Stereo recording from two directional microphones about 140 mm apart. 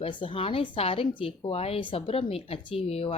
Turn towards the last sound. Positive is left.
turn(degrees=45)  # may be behind; listen again after turning